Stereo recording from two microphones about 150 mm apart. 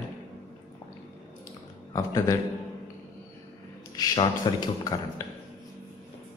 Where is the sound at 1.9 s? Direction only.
20° left (ahead or behind).